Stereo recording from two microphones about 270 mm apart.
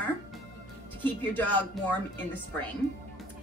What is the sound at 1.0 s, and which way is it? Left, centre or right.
Speech, centre.